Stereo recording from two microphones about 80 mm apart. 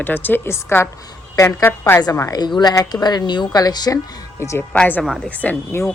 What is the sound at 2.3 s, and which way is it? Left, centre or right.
Speech, left.